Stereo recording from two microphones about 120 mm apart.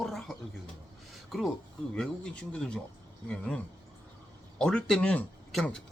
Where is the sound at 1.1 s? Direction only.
Centre (ahead or behind).